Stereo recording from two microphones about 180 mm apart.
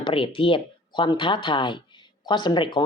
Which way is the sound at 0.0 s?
30° left (ahead or behind).